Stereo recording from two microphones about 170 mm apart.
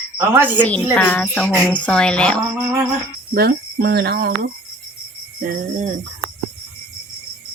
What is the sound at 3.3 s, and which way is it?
Speech, 65° right (ahead or behind).